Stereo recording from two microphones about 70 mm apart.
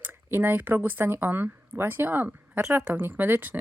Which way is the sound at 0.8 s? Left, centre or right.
Right.